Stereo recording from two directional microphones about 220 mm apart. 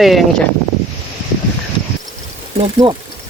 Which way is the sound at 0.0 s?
Centre (ahead or behind).